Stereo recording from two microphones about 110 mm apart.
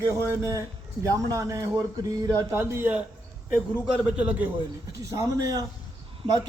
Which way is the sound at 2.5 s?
20° right (ahead or behind).